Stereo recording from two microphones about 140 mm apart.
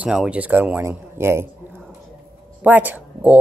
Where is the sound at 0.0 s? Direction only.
5° right (ahead or behind).